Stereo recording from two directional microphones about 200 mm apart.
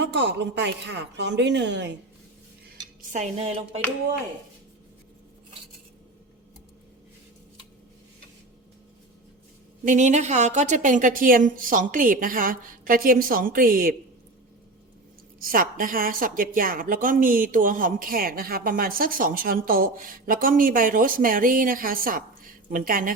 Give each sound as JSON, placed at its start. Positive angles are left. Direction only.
{"t": 0.0, "sound": "a woman's voice", "side_deg": -65}
{"t": 3.1, "sound": "dishes", "side_deg": -35}
{"t": 9.8, "sound": "a woman's voice", "side_deg": -40}
{"t": 15.4, "sound": "a woman's voice", "side_deg": -45}